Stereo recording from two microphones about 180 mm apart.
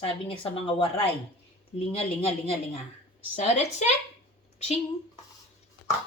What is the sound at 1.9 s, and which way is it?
Speech, 35° left (ahead or behind).